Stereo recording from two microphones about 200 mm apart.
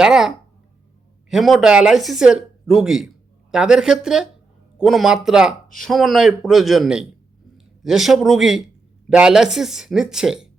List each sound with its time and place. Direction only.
0.0 s a man's voice: 5° right (ahead or behind)